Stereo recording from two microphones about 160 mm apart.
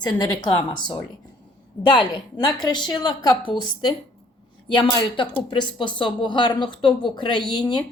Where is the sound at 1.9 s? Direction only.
30° left (ahead or behind).